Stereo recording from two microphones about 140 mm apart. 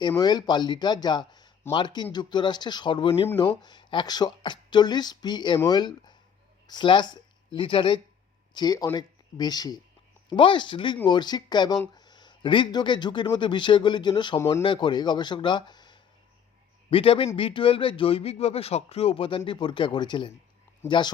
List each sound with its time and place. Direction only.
0.2 s a man's voice: 30° left (ahead or behind)
14.3 s speech: 20° left (ahead or behind)
14.6 s a man's voice: 35° left (ahead or behind)